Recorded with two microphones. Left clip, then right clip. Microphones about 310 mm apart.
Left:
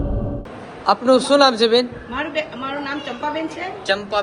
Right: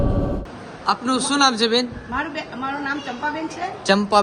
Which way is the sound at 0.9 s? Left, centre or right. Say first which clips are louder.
Left 6 dB; centre.